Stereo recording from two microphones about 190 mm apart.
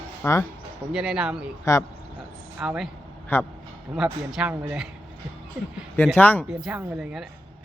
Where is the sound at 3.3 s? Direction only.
10° left (ahead or behind).